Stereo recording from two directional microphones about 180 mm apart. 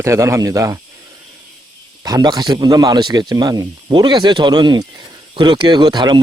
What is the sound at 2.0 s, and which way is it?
Speech, 20° right (ahead or behind).